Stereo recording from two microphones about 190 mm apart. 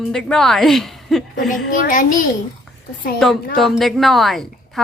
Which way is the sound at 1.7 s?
45° left (ahead or behind).